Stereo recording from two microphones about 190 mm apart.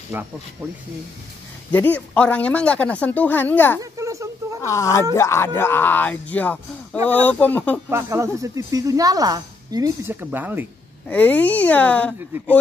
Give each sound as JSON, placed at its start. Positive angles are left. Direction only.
{"t": 0.1, "sound": "speech", "side_deg": -10}
{"t": 1.7, "sound": "speech", "side_deg": 10}
{"t": 4.0, "sound": "a sound", "side_deg": -15}
{"t": 4.6, "sound": "speech", "side_deg": 15}
{"t": 7.9, "sound": "speech", "side_deg": -15}
{"t": 11.1, "sound": "speech", "side_deg": 10}